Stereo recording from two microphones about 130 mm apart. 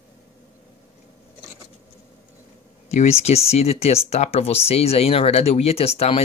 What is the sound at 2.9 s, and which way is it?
Speech, 55° left (ahead or behind).